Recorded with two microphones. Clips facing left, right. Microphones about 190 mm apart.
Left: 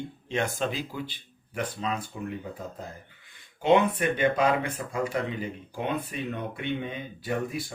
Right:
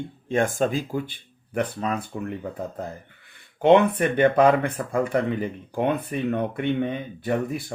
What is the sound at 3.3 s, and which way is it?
Speech, 60° right (ahead or behind).